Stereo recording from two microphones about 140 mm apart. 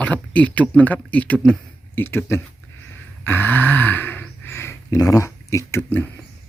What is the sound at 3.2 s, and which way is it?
Grunt, 15° left (ahead or behind).